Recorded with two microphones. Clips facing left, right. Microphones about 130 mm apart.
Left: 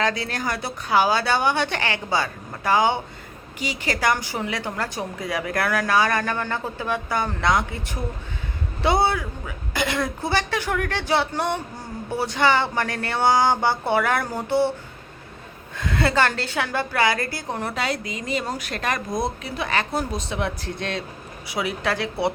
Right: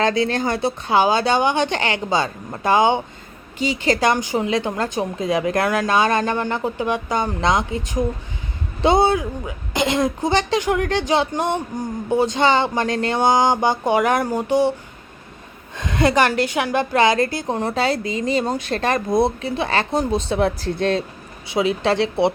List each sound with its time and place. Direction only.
0.0 s a woman's voice: 25° right (ahead or behind)
15.8 s a woman's voice: 20° right (ahead or behind)